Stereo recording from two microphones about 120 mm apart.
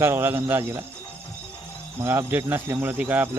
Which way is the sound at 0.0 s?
20° right (ahead or behind).